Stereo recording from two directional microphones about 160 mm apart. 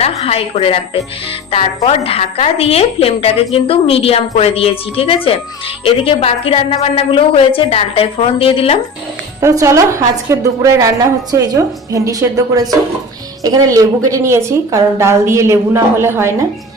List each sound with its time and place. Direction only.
0.0 s a woman's voice: 40° left (ahead or behind)
9.4 s a woman's voice: 20° right (ahead or behind)